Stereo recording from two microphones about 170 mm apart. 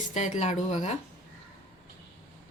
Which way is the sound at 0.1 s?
45° left (ahead or behind).